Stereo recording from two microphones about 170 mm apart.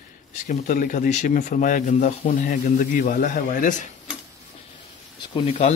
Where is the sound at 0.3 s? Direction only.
45° left (ahead or behind).